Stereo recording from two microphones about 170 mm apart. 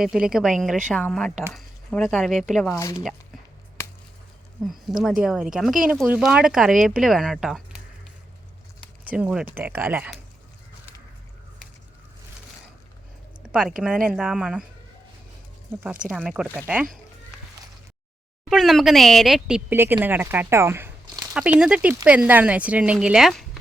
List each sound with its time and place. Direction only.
0.0 s speech: 5° right (ahead or behind)
2.6 s speech: 15° left (ahead or behind)
4.6 s speech: centre (ahead or behind)
9.0 s speech: 5° right (ahead or behind)
13.4 s speech: 5° right (ahead or behind)
15.7 s speech: 10° right (ahead or behind)
18.4 s speech: centre (ahead or behind)